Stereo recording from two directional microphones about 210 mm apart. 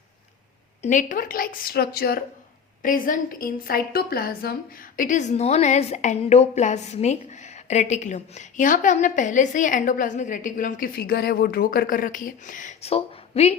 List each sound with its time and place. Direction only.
0.8 s a woman's voice: 35° left (ahead or behind)